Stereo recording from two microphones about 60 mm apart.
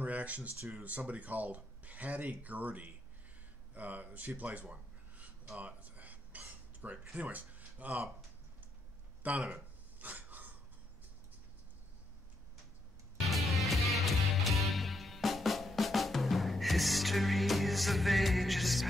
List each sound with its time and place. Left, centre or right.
0.0 s speech: right
4.4 s a sound: right
7.2 s speech: right
9.2 s speech: right
9.9 s a sound: right
13.3 s music: centre